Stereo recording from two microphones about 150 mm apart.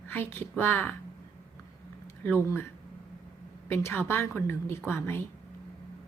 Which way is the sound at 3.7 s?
15° left (ahead or behind).